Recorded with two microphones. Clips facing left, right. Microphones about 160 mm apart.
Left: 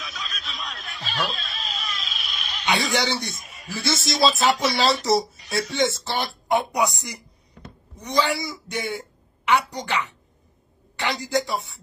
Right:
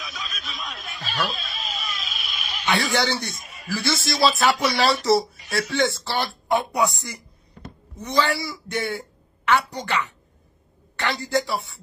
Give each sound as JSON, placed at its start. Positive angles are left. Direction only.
{"t": 0.0, "sound": "snicker", "side_deg": 0}
{"t": 2.6, "sound": "speech", "side_deg": 20}
{"t": 3.3, "sound": "a man's voice", "side_deg": 0}
{"t": 3.7, "sound": "speech", "side_deg": 20}
{"t": 8.0, "sound": "a woman's voice", "side_deg": 15}